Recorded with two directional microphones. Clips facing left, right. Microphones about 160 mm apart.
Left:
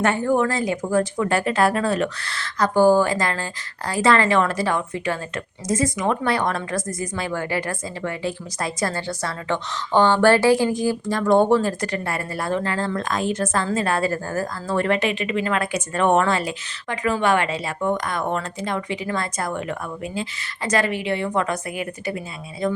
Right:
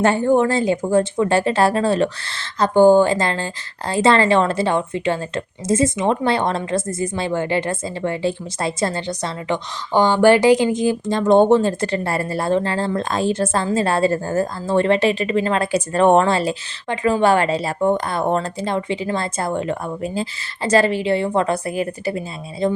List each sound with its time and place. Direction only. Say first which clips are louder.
0.0 s a woman's voice: right 4 dB; 30° right (ahead or behind)